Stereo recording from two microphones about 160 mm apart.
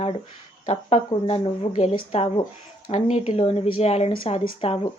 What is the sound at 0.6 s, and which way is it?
A woman's voice, 40° left (ahead or behind).